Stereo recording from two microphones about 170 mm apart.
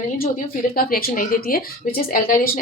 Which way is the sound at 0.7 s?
60° left (ahead or behind).